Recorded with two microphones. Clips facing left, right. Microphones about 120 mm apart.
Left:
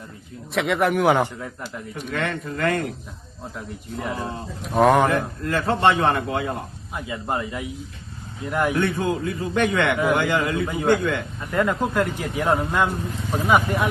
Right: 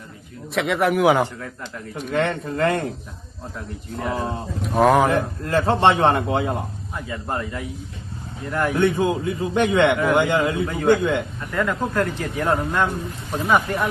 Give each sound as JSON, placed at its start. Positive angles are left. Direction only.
{"t": 0.5, "sound": "speech", "side_deg": 0}
{"t": 2.1, "sound": "a man's voice", "side_deg": -30}
{"t": 3.7, "sound": "speech", "side_deg": 0}
{"t": 4.1, "sound": "a man's voice", "side_deg": -25}
{"t": 4.6, "sound": "speech", "side_deg": 0}
{"t": 5.1, "sound": "a man's voice", "side_deg": -30}
{"t": 6.9, "sound": "speech", "side_deg": 10}
{"t": 8.7, "sound": "a man's voice", "side_deg": -20}
{"t": 11.3, "sound": "speech", "side_deg": 20}